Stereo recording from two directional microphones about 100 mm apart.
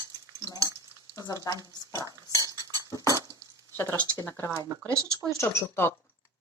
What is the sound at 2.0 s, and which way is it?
Cutlery, 35° right (ahead or behind).